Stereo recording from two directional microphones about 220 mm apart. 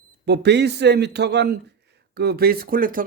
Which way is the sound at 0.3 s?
50° right (ahead or behind).